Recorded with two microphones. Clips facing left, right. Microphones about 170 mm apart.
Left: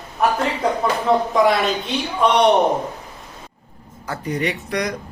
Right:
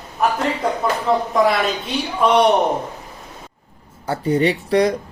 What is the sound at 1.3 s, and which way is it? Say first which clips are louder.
A man's voice: even; centre (ahead or behind).